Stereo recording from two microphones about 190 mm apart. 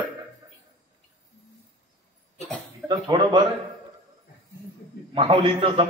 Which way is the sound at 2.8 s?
25° right (ahead or behind).